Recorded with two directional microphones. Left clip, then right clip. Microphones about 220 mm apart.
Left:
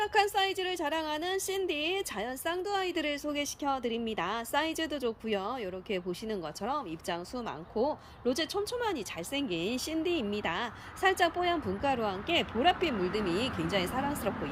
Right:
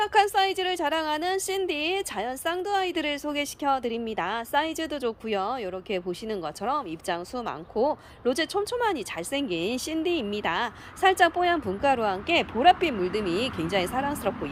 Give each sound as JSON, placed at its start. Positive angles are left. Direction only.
{"t": 0.0, "sound": "a woman's voice", "side_deg": -10}